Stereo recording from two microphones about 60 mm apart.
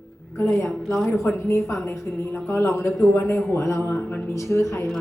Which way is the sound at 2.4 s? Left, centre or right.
Left.